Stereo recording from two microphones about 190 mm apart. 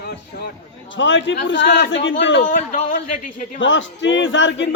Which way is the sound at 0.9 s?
75° left (ahead or behind).